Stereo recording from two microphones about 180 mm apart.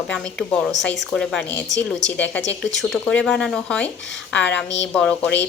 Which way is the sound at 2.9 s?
5° left (ahead or behind).